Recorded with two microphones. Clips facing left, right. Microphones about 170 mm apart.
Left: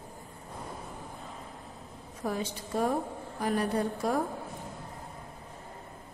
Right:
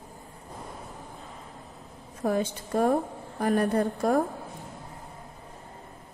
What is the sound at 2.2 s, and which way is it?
A woman's voice, 50° right (ahead or behind).